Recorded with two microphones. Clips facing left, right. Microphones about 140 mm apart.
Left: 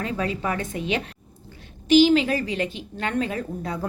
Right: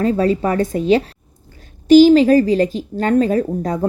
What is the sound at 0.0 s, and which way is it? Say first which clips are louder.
A woman's voice: right 11 dB; 40° right (ahead or behind).